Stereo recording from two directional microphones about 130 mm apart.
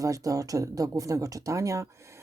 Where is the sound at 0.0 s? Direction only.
25° right (ahead or behind).